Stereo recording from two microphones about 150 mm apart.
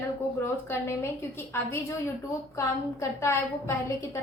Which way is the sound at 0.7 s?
15° left (ahead or behind).